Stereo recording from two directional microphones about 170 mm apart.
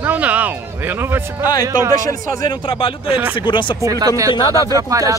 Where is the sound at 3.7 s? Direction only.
20° right (ahead or behind).